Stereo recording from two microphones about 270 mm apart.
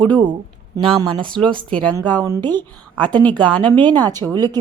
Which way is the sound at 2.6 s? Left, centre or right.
Centre.